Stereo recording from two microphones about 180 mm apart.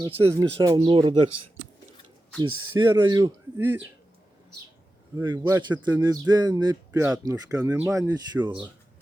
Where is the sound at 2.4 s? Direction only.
25° right (ahead or behind).